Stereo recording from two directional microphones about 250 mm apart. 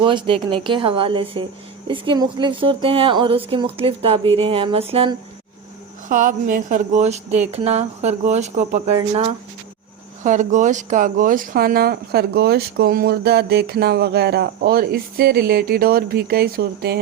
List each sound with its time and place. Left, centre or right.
0.0 s a woman's voice: centre; by 17.0 s right